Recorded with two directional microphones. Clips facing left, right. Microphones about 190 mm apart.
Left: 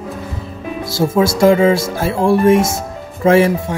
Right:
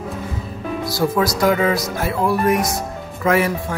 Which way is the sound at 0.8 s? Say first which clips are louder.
Left 4 dB; 25° left (ahead or behind).